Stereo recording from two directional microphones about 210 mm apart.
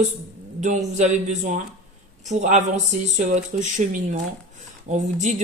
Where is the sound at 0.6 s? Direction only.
35° right (ahead or behind).